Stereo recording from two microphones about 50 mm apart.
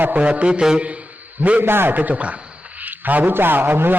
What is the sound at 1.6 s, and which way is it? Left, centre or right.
Speech, right.